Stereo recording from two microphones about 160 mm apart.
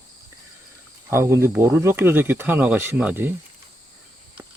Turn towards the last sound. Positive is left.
turn(degrees=-10)  # may be behind; listen again after turning